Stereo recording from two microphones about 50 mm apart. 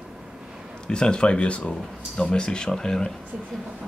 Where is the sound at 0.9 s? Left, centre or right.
Centre.